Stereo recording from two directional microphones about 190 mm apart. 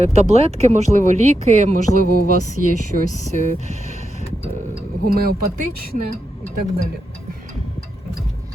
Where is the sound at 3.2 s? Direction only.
40° right (ahead or behind).